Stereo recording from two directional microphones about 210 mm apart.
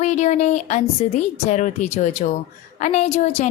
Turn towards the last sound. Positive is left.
turn(degrees=30)  # may be behind; listen again after turning